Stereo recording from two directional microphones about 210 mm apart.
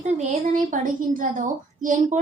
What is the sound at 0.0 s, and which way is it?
A woman's voice, 35° right (ahead or behind).